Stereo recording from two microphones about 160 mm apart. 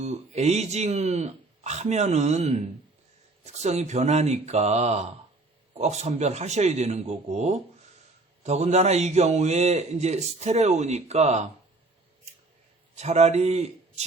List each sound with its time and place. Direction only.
0.0 s a man's voice: 40° right (ahead or behind)
13.0 s speech: 45° right (ahead or behind)